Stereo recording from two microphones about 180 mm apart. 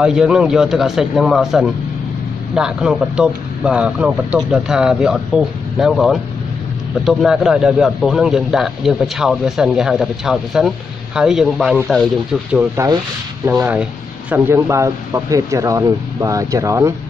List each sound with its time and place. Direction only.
0.0 s speech: 5° right (ahead or behind)
12.5 s speech: 15° right (ahead or behind)